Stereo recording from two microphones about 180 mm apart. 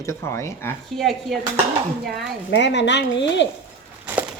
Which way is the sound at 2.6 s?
75° left (ahead or behind).